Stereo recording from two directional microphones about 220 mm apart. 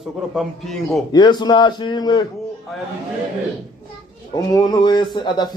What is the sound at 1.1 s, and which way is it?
Speech, 20° left (ahead or behind).